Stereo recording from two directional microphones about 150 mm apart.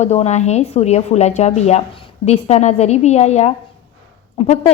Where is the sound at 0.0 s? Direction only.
45° left (ahead or behind).